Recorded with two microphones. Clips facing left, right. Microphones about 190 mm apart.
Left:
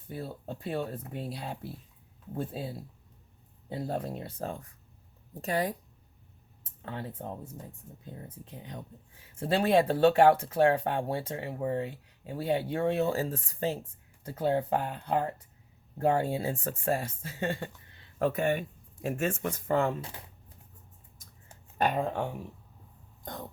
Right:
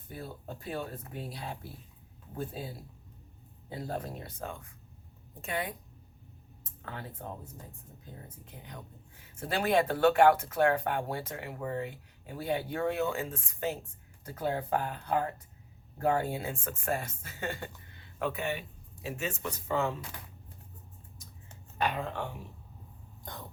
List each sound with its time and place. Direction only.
0.1 s speech: 30° left (ahead or behind)
6.8 s speech: 30° left (ahead or behind)
8.4 s speech: 30° left (ahead or behind)
17.9 s a sound: 35° left (ahead or behind)
19.0 s speech: 50° left (ahead or behind)
21.8 s speech: 50° left (ahead or behind)
23.2 s throat clearing: 45° left (ahead or behind)